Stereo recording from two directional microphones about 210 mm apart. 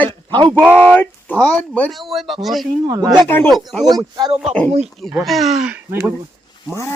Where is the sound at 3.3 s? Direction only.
10° left (ahead or behind).